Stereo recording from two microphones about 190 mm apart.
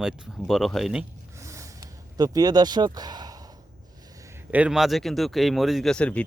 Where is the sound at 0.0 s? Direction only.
Centre (ahead or behind).